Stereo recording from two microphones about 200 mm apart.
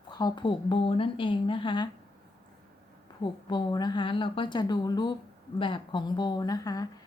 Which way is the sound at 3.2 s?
20° left (ahead or behind).